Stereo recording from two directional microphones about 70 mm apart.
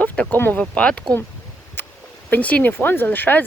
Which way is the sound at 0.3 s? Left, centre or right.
Left.